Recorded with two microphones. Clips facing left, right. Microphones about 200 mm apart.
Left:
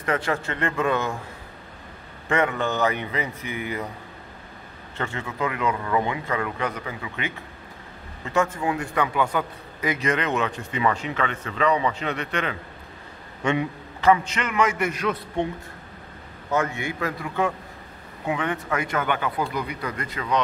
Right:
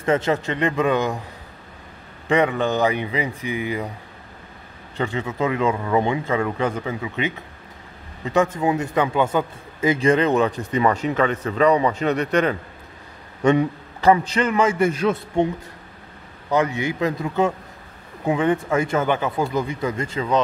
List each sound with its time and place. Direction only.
0.0 s speech: 25° right (ahead or behind)
2.2 s speech: 20° right (ahead or behind)
4.9 s a man's voice: 15° right (ahead or behind)
16.4 s a man's voice: 15° right (ahead or behind)